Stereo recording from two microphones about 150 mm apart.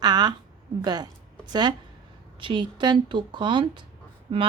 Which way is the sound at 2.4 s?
30° right (ahead or behind).